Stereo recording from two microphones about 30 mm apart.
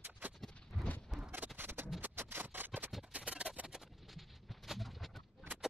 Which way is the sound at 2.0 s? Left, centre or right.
Right.